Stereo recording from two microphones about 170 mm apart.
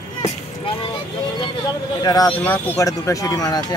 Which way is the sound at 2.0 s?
20° left (ahead or behind).